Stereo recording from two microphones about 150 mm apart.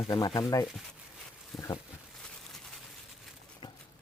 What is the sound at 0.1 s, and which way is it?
Speech, 25° left (ahead or behind).